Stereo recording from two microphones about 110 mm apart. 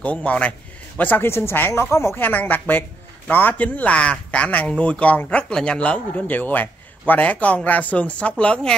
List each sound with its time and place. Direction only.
0.0 s speech: 10° left (ahead or behind)